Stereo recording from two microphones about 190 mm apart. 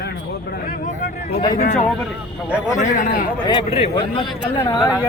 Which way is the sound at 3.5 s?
30° left (ahead or behind).